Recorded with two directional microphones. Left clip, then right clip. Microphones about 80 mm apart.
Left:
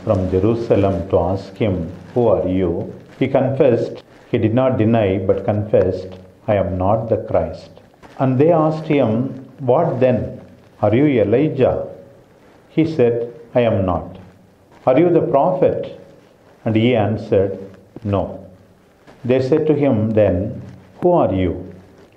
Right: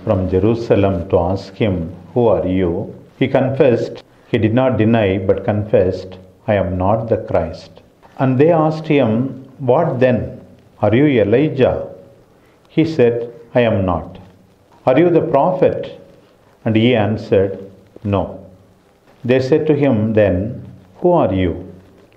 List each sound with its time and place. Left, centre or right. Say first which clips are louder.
0.0 s a man's voice: right 1 dB; right
13.2 s a sound: right 1 dB; right
14.9 s speech: right 1 dB; right